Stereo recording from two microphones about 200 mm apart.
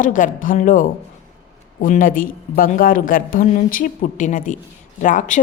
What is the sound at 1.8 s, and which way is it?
A woman's voice, 40° left (ahead or behind).